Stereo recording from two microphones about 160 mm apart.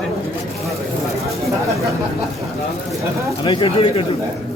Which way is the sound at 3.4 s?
30° left (ahead or behind).